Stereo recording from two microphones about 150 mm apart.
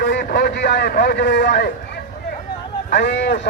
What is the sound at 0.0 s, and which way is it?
A man's voice, 70° left (ahead or behind).